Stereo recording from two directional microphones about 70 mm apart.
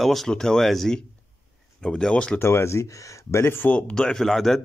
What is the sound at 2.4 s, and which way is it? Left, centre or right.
Speech, left.